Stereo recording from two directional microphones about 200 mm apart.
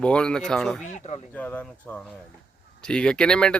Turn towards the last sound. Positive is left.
turn(degrees=5)  # may be behind; listen again after turning